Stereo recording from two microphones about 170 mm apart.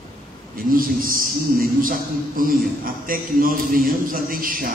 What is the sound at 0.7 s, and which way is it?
A man's voice, 55° right (ahead or behind).